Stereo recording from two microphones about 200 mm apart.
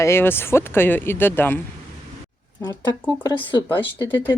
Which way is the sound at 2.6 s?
15° left (ahead or behind).